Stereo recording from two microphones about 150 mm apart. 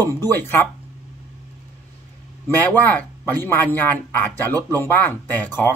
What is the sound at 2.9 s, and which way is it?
Speech, 15° left (ahead or behind).